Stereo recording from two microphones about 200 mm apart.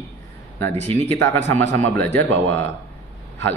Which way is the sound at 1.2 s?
10° left (ahead or behind).